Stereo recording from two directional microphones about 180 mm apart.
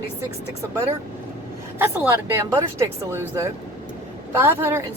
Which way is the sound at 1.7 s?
10° right (ahead or behind).